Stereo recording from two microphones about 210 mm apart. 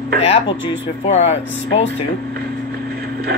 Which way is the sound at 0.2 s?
30° left (ahead or behind).